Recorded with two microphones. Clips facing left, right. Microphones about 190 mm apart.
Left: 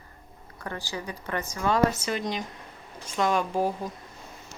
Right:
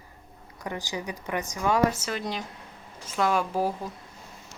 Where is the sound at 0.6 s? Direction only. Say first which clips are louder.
Right 2 dB; 15° right (ahead or behind).